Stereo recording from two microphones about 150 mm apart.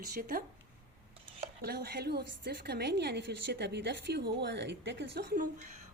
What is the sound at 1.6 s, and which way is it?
A woman's voice, 90° right.